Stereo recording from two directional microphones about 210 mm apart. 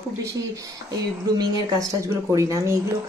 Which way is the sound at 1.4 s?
15° right (ahead or behind).